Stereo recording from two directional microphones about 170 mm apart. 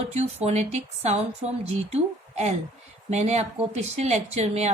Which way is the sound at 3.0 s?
40° right (ahead or behind).